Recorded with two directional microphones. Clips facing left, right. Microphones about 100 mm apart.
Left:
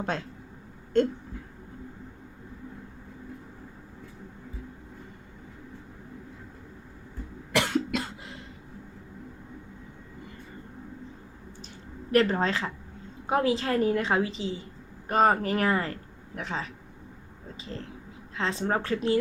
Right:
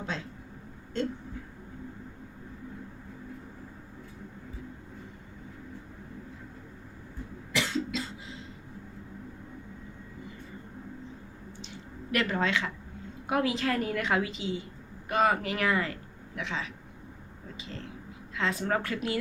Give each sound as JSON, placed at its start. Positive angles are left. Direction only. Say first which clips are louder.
{"t": 0.9, "sound": "a sound", "louder": "left 8 dB", "side_deg": 50}
{"t": 7.5, "sound": "cough", "louder": "left 5 dB", "side_deg": 55}
{"t": 12.1, "sound": "a woman's voice", "louder": "left 5 dB", "side_deg": 35}
{"t": 18.3, "sound": "speech", "louder": "left 1 dB", "side_deg": 30}